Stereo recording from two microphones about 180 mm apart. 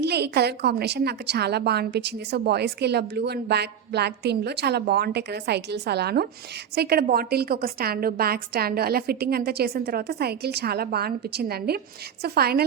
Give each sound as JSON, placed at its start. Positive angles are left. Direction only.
{"t": 0.0, "sound": "a woman's voice", "side_deg": -65}